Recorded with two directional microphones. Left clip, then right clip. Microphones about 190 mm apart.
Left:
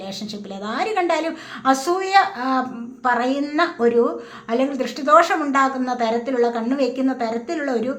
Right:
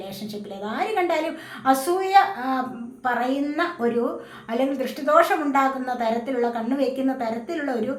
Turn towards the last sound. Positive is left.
turn(degrees=35)  # may be behind; listen again after turning